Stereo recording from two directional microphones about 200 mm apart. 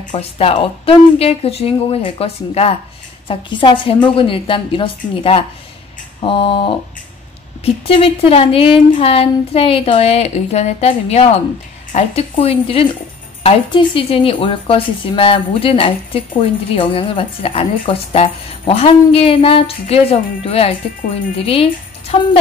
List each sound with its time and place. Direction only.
0.0 s a woman's voice: 30° left (ahead or behind)